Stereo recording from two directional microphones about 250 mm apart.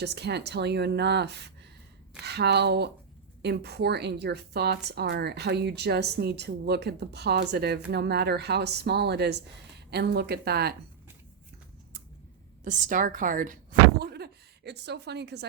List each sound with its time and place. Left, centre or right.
0.0 s a woman's voice: right
12.6 s speech: right